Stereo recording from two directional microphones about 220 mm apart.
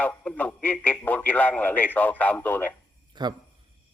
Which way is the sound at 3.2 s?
20° right (ahead or behind).